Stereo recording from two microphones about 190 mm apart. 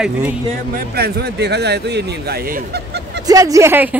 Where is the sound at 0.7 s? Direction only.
55° right (ahead or behind).